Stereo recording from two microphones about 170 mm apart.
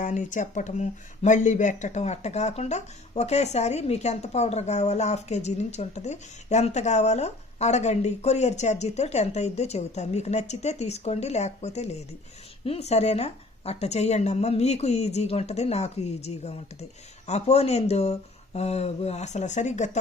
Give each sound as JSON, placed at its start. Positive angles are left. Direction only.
{"t": 0.0, "sound": "speech", "side_deg": 50}